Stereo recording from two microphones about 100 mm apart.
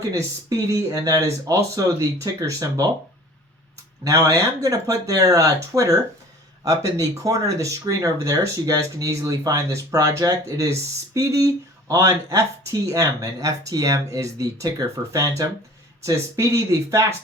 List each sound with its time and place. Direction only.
0.1 s speech: 35° right (ahead or behind)
4.0 s speech: 35° right (ahead or behind)